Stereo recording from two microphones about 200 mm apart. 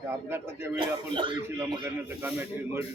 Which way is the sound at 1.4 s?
10° right (ahead or behind).